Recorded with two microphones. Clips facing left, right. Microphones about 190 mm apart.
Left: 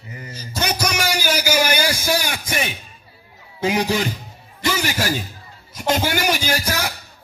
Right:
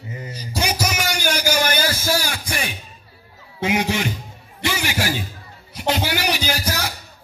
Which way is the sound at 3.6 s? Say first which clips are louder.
Left 1 dB; 35° left (ahead or behind).